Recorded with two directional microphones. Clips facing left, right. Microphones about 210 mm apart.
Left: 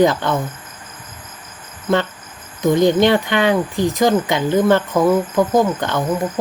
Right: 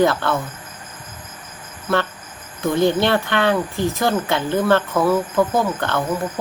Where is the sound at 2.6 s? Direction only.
15° left (ahead or behind).